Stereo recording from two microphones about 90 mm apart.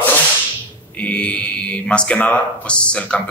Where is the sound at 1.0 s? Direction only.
15° left (ahead or behind).